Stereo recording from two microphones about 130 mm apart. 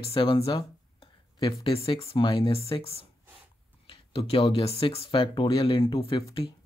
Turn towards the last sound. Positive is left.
turn(degrees=45)  # may be behind; listen again after turning